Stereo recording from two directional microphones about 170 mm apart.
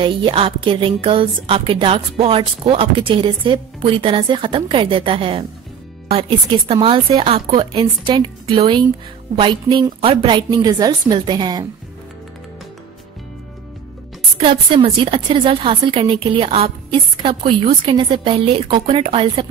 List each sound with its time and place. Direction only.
0.0 s a woman's voice: 30° right (ahead or behind)
6.7 s a woman's voice: 35° right (ahead or behind)
14.4 s a woman's voice: 30° right (ahead or behind)